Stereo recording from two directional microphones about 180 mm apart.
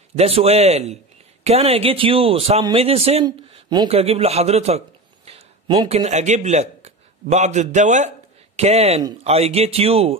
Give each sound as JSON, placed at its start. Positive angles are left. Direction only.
{"t": 0.1, "sound": "a man's voice", "side_deg": -35}